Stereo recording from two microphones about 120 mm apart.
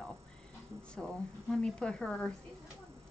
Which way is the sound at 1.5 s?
5° left (ahead or behind).